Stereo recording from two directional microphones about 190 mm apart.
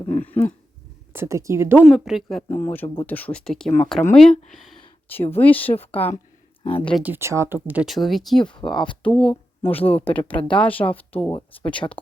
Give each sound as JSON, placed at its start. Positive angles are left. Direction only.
{"t": 0.1, "sound": "a sound", "side_deg": 10}
{"t": 1.1, "sound": "a woman's voice", "side_deg": -15}
{"t": 1.8, "sound": "speech", "side_deg": 0}
{"t": 2.5, "sound": "speech", "side_deg": 10}
{"t": 6.7, "sound": "speech", "side_deg": 30}
{"t": 6.9, "sound": "speech", "side_deg": -10}